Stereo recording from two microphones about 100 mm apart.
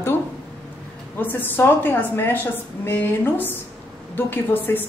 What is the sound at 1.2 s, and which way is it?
A woman's voice, 20° left (ahead or behind).